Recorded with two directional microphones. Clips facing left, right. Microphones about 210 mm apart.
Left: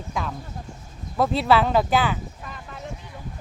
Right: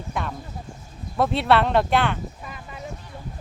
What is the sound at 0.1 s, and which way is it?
Speech, centre (ahead or behind).